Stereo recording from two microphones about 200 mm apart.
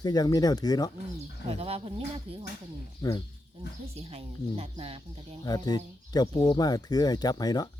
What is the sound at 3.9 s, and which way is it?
Speech, 30° right (ahead or behind).